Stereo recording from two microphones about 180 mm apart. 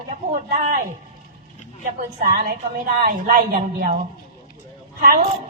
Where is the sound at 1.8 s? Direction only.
45° right (ahead or behind).